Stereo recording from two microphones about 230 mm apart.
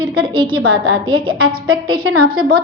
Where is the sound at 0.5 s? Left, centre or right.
Right.